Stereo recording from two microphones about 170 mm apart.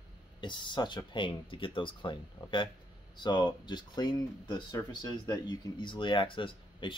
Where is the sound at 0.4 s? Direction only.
30° left (ahead or behind).